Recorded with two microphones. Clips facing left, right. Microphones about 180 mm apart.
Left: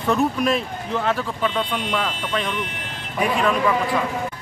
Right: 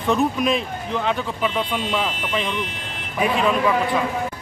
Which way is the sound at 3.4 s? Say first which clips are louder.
Right 1 dB; 5° right (ahead or behind).